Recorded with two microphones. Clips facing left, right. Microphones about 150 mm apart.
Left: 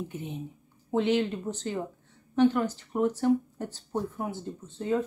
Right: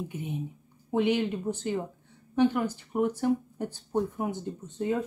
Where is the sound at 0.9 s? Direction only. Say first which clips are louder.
Even; 15° right (ahead or behind).